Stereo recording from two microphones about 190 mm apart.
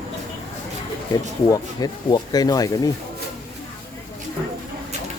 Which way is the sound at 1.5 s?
20° left (ahead or behind).